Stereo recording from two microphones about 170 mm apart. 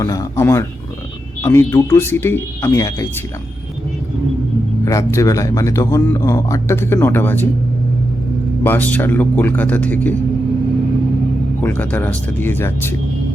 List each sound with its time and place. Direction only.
0.0 s speech: 20° left (ahead or behind)
4.9 s speech: 20° left (ahead or behind)
8.6 s speech: 10° left (ahead or behind)
11.6 s speech: 10° left (ahead or behind)